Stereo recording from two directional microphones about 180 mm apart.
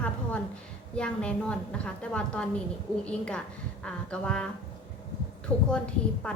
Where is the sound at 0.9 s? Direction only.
5° left (ahead or behind).